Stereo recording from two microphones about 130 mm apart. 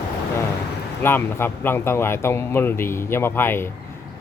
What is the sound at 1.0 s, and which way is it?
Speech, 15° left (ahead or behind).